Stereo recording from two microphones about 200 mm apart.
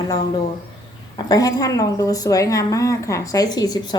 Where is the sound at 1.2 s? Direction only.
20° left (ahead or behind).